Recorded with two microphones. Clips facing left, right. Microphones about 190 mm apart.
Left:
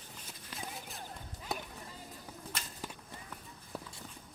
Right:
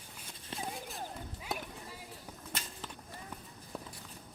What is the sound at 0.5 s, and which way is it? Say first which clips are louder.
Clip-clop: right 4 dB; 25° right (ahead or behind).